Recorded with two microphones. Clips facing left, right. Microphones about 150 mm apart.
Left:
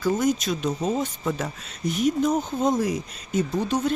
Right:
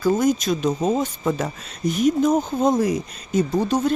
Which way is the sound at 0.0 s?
40° right (ahead or behind).